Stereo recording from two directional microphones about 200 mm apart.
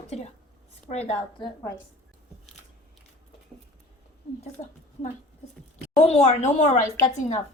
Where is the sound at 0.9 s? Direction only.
30° left (ahead or behind).